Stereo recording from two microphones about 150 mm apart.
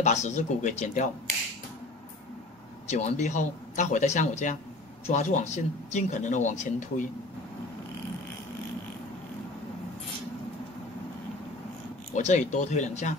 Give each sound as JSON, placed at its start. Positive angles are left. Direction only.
{"t": 0.0, "sound": "speech", "side_deg": 50}
{"t": 2.9, "sound": "speech", "side_deg": 50}
{"t": 12.1, "sound": "speech", "side_deg": 50}